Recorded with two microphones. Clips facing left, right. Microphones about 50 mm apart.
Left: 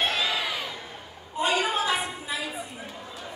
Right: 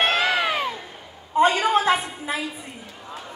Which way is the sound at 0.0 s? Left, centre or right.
Right.